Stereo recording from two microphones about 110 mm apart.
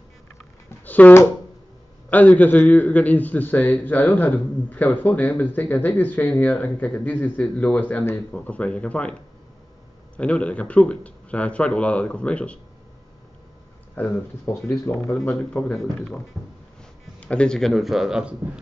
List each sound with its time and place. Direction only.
0.8 s a man's voice: 15° left (ahead or behind)
10.1 s a man's voice: 10° left (ahead or behind)
13.9 s speech: 20° left (ahead or behind)
15.3 s a man's voice: 5° left (ahead or behind)
17.2 s a man's voice: 10° left (ahead or behind); by 18.3 s 5° right (ahead or behind)